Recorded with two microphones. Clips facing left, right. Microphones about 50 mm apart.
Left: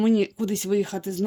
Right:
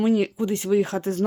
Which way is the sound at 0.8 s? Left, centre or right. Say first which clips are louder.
Right 3 dB; right.